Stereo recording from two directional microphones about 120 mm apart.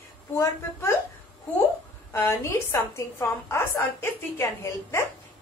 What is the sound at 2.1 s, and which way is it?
A woman's voice, 20° left (ahead or behind).